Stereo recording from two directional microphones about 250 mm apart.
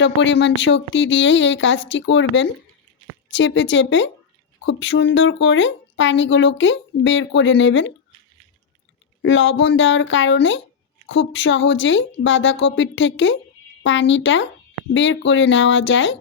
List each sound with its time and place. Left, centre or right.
0.0 s speech: left
9.2 s speech: left